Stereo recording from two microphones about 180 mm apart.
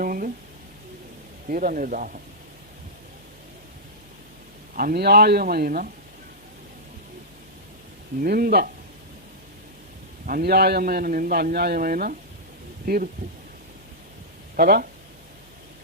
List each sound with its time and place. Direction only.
0.0 s a sound: 50° right (ahead or behind)
1.5 s speech: 50° right (ahead or behind)
4.8 s a man's voice: 55° right (ahead or behind)
8.2 s a man's voice: 55° right (ahead or behind)
10.2 s a man's voice: 55° right (ahead or behind)
14.5 s speech: 55° right (ahead or behind)